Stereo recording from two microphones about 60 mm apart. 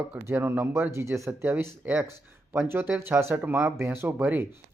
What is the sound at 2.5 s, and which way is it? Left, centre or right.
Speech, right.